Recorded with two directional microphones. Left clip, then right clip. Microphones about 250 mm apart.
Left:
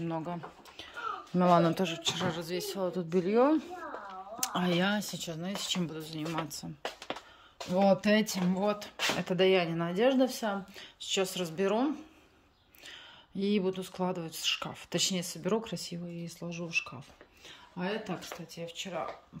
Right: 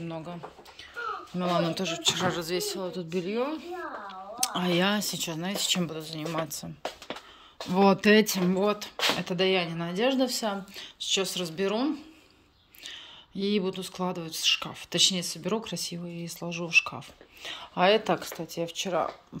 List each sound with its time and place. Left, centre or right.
0.0 s speech: centre
4.4 s speech: centre
7.7 s speech: centre